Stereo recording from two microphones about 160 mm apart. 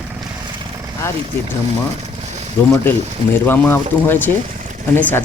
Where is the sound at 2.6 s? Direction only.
15° left (ahead or behind).